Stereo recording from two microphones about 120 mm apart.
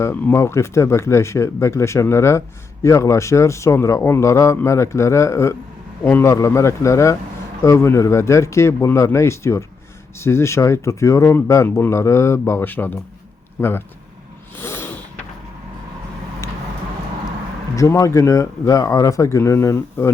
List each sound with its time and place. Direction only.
0.0 s a man's voice: 20° left (ahead or behind)
14.5 s snort: 20° left (ahead or behind)
16.4 s vehicle: 25° left (ahead or behind)
17.7 s speech: 25° left (ahead or behind)